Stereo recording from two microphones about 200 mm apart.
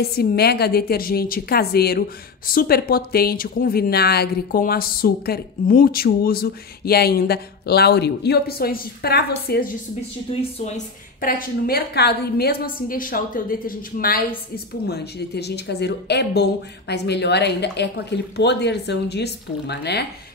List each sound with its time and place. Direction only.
0.0 s a woman's voice: 50° left (ahead or behind)
11.1 s a woman's voice: 45° left (ahead or behind)